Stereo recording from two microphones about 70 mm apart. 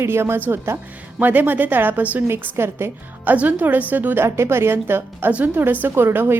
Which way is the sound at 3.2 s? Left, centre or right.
Right.